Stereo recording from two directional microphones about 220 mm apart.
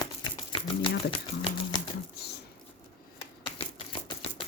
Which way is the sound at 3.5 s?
25° left (ahead or behind).